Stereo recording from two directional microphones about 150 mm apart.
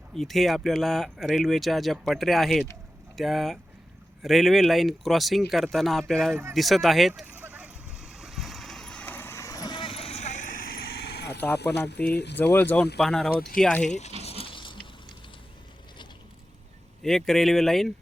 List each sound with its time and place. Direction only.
0.1 s speech: centre (ahead or behind)
7.3 s vehicle: 10° right (ahead or behind); by 11.3 s 90° left
11.3 s a sound: 10° left (ahead or behind)
12.0 s speech: 10° left (ahead or behind)
13.9 s a sound: 45° left (ahead or behind)
17.0 s speech: centre (ahead or behind)